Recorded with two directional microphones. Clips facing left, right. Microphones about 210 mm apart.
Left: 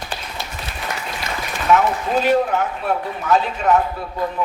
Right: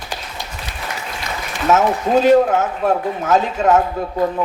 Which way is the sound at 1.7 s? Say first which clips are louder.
Right 3 dB; 45° right (ahead or behind).